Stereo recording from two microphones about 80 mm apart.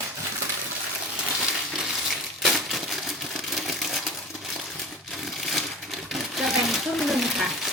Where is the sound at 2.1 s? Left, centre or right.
Centre.